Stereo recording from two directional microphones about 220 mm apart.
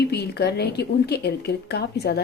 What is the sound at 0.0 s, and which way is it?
A woman's voice, 50° left (ahead or behind).